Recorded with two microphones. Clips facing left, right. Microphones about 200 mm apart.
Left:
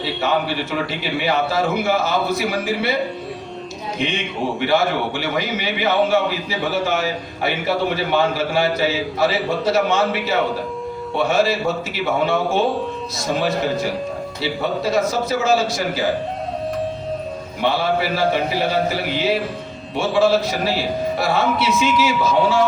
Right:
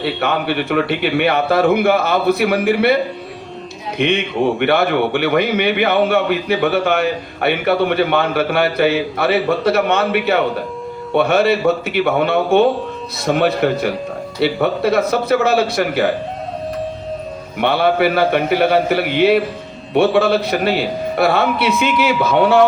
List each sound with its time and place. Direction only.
0.0 s a man's voice: 60° right (ahead or behind)
3.9 s a man's voice: 60° right (ahead or behind)
17.6 s a man's voice: 60° right (ahead or behind)